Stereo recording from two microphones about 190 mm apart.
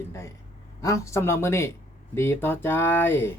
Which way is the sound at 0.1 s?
15° left (ahead or behind).